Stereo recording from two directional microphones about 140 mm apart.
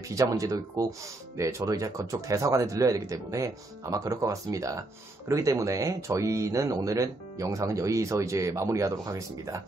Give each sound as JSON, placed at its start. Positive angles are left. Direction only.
{"t": 0.1, "sound": "speech", "side_deg": -25}